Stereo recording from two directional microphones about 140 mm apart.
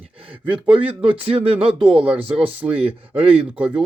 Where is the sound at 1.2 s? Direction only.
40° right (ahead or behind).